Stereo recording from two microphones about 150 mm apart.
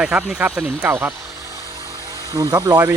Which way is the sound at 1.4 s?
20° right (ahead or behind).